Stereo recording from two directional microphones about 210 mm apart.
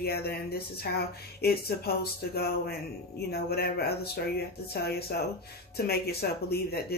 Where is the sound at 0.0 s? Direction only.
50° left (ahead or behind).